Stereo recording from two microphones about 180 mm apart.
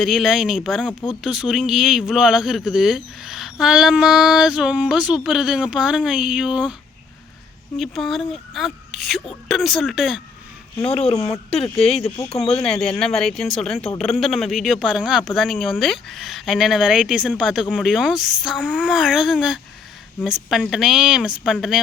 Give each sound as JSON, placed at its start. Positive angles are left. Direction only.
{"t": 0.0, "sound": "speech", "side_deg": 0}
{"t": 7.8, "sound": "speech", "side_deg": 0}
{"t": 10.8, "sound": "speech", "side_deg": 35}
{"t": 11.1, "sound": "speech", "side_deg": 15}
{"t": 12.1, "sound": "speech", "side_deg": 35}
{"t": 12.5, "sound": "speech", "side_deg": 5}